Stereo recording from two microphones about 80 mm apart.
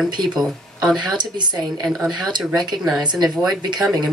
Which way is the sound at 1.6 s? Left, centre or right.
Centre.